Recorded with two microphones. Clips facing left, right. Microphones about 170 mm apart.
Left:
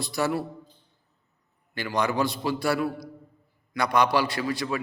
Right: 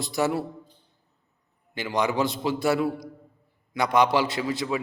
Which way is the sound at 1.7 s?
20° right (ahead or behind).